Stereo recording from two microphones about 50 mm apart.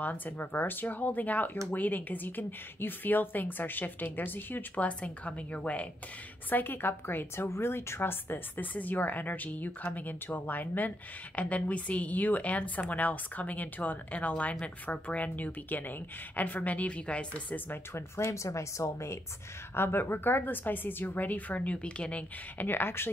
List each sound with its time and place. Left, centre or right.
0.0 s speech: left
4.8 s a woman's voice: left
6.5 s a woman's voice: left
7.4 s speech: left
17.9 s speech: left
19.7 s speech: left
22.6 s a woman's voice: left